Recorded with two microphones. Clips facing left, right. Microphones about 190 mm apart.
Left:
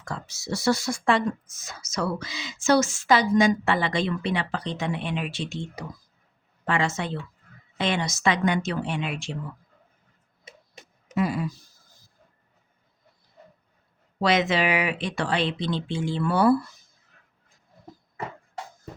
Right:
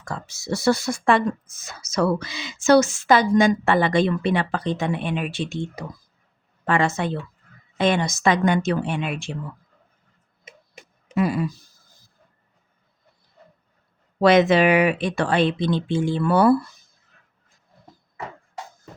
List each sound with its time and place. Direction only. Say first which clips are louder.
0.0 s speech: right 2 dB; 50° right (ahead or behind)
6.7 s speech: right 5 dB; 55° right (ahead or behind)
11.1 s speech: right 3 dB; 60° right (ahead or behind)
14.2 s speech: right 7 dB; 55° right (ahead or behind)